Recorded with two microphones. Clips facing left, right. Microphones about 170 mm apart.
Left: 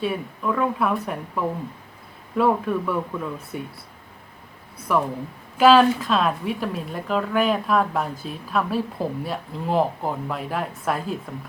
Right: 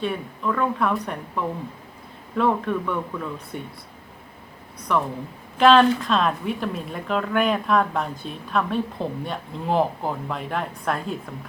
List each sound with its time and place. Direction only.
0.0 s a woman's voice: 5° left (ahead or behind)
2.4 s speech: 5° left (ahead or behind)
4.9 s a woman's voice: 5° left (ahead or behind)